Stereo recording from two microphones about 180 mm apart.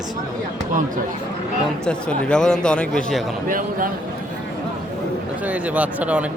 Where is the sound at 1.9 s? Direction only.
5° left (ahead or behind).